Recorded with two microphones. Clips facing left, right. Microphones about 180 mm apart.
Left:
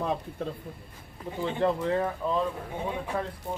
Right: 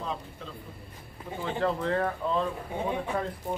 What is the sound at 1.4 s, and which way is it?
A man's voice, 15° left (ahead or behind).